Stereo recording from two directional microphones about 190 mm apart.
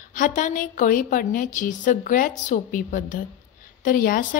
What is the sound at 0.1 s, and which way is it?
A woman's voice, 45° left (ahead or behind).